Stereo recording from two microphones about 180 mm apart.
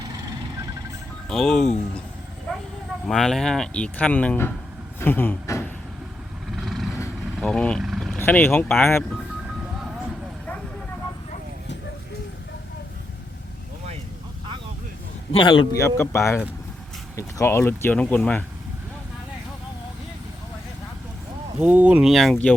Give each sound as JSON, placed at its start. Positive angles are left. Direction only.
{"t": 1.3, "sound": "speech", "side_deg": 0}
{"t": 3.1, "sound": "speech", "side_deg": 0}
{"t": 6.6, "sound": "vehicle", "side_deg": 0}
{"t": 8.2, "sound": "speech", "side_deg": 10}
{"t": 15.3, "sound": "a man's voice", "side_deg": 30}
{"t": 15.8, "sound": "speech", "side_deg": 15}
{"t": 21.6, "sound": "speech", "side_deg": -10}